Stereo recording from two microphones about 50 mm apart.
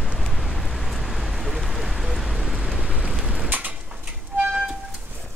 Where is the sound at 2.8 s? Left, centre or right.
Centre.